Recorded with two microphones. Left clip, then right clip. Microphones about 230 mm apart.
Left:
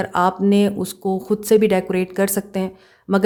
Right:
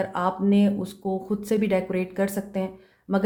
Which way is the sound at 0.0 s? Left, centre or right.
Left.